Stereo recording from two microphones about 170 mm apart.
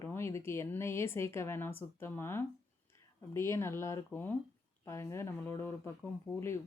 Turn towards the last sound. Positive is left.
turn(degrees=20)  # may be behind; listen again after turning